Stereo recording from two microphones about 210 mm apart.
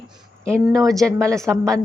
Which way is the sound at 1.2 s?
15° right (ahead or behind).